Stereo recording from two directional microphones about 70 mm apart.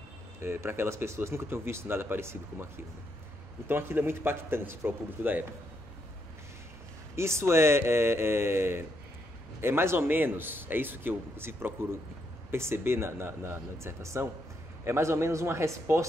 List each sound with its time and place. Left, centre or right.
0.4 s speech: right
7.2 s speech: right